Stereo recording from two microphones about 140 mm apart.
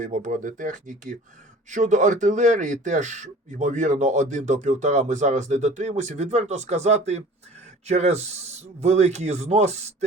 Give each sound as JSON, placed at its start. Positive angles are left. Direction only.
{"t": 0.0, "sound": "speech", "side_deg": -60}